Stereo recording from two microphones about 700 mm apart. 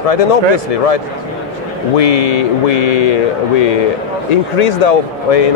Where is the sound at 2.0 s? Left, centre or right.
Left.